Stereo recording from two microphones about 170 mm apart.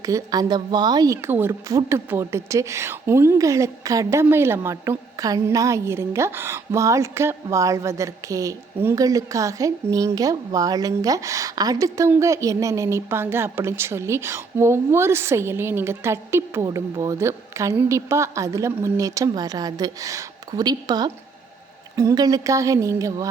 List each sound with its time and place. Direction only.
0.0 s a woman's voice: 20° right (ahead or behind)